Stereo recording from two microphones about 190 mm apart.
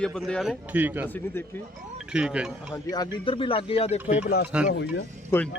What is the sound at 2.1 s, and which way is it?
Speech, 5° right (ahead or behind).